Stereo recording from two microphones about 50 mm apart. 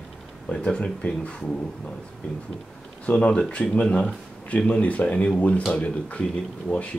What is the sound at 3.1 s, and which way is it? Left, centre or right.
Speech, centre.